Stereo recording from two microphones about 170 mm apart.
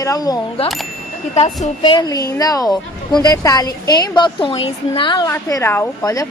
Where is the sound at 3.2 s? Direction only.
20° left (ahead or behind).